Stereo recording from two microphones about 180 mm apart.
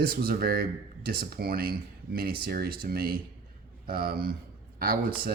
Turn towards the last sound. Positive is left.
turn(degrees=-55)  # may be behind; listen again after turning